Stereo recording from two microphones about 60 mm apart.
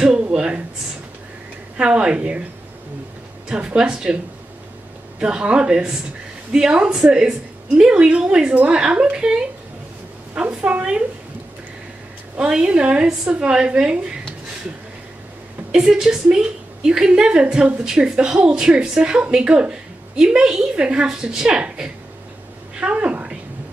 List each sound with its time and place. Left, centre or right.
0.3 s a sound: centre
1.8 s a woman's voice: centre
3.4 s a woman's voice: centre
5.2 s a woman's voice: centre
12.4 s a woman's voice: centre
15.7 s a woman's voice: centre